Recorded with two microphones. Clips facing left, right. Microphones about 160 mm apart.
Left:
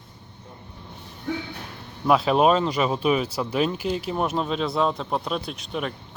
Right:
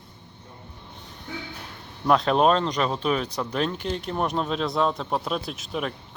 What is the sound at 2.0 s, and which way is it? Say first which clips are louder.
Speech: left 1 dB; 5° left (ahead or behind).